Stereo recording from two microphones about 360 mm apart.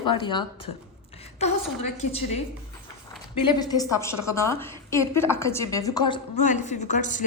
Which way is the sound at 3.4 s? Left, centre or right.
Centre.